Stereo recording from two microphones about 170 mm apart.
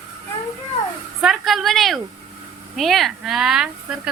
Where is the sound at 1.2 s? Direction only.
Centre (ahead or behind).